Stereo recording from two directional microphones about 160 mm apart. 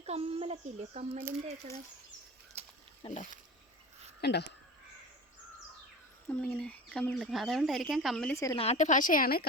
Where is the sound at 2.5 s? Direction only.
40° right (ahead or behind).